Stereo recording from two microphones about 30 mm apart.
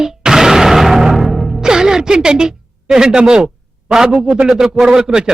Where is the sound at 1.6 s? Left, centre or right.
Right.